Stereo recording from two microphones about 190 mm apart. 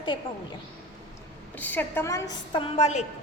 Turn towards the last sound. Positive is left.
turn(degrees=35)  # may be behind; listen again after turning